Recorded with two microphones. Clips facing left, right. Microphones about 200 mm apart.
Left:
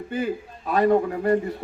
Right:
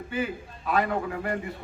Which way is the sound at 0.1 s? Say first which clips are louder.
Left 4 dB; 40° left (ahead or behind).